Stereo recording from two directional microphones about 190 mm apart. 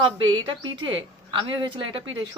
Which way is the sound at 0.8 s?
75° right (ahead or behind).